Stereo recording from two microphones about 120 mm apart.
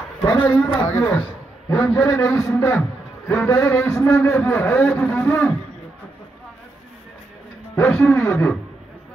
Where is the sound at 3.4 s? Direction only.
30° left (ahead or behind).